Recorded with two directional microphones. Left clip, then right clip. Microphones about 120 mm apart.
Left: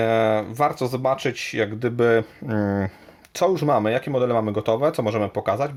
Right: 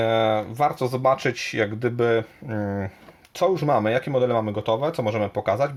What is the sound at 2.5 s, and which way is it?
Speech, 50° left (ahead or behind).